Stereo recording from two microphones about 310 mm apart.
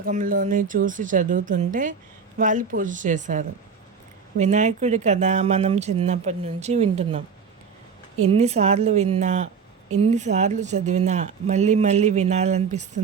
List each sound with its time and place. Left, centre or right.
0.0 s speech: right
8.3 s speech: centre